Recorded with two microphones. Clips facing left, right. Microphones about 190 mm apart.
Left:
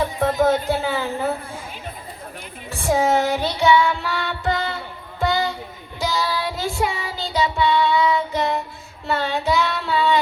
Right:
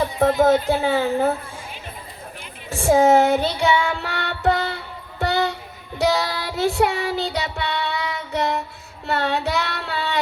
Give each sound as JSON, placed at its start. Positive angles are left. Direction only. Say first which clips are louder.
{"t": 0.2, "sound": "speech", "louder": "right 3 dB", "side_deg": -50}
{"t": 2.9, "sound": "child singing", "louder": "right 4 dB", "side_deg": -55}
{"t": 4.0, "sound": "music", "louder": "right 2 dB", "side_deg": -65}
{"t": 5.2, "sound": "a sound", "louder": "even", "side_deg": -65}
{"t": 6.0, "sound": "child singing", "louder": "right 3 dB", "side_deg": -65}